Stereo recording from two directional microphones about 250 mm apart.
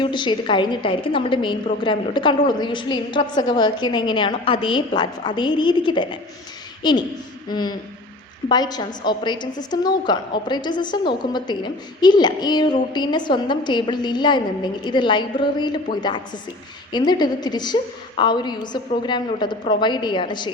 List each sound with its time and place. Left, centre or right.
0.0 s a woman's voice: centre